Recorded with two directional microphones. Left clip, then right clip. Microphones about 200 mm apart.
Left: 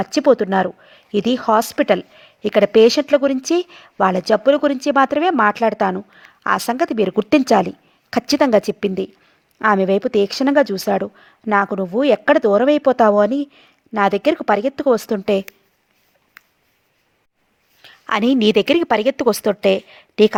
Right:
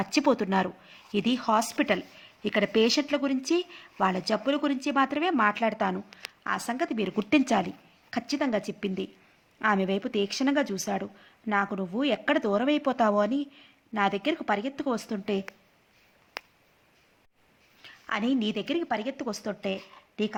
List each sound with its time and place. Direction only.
0.0 s a woman's voice: 30° left (ahead or behind); by 15.4 s 50° left (ahead or behind)
17.8 s a woman's voice: 50° left (ahead or behind)